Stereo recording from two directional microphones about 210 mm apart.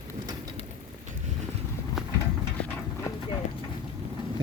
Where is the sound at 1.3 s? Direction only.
35° right (ahead or behind).